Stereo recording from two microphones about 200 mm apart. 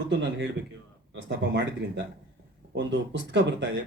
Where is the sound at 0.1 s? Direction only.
65° right (ahead or behind).